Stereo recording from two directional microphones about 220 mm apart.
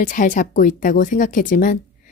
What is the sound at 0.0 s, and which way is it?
Speech, 35° left (ahead or behind).